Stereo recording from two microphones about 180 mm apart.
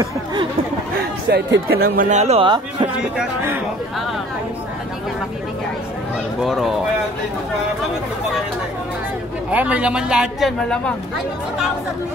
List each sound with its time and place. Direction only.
0.0 s speech: 25° right (ahead or behind)
1.3 s speech: 60° right (ahead or behind); by 2.9 s 25° right (ahead or behind)
6.4 s speech: centre (ahead or behind)
9.5 s speech: 10° right (ahead or behind)